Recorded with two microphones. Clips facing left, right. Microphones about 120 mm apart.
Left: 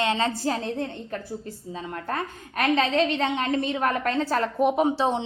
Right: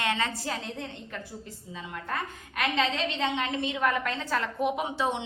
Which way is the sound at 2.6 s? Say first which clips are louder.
Left 6 dB; 45° left (ahead or behind).